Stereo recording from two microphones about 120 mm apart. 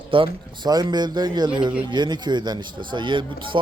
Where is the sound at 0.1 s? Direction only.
45° right (ahead or behind).